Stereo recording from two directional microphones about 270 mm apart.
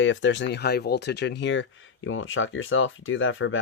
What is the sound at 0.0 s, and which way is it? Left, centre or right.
Speech, left.